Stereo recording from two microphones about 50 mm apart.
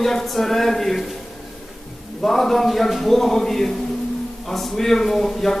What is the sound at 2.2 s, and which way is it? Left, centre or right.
A man's voice, centre.